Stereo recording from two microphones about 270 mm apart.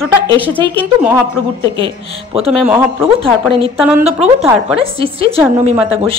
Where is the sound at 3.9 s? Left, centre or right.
Right.